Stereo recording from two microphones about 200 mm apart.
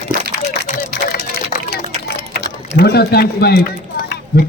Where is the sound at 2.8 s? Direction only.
50° left (ahead or behind).